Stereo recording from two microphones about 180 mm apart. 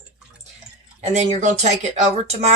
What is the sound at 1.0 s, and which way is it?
Speech, 40° right (ahead or behind).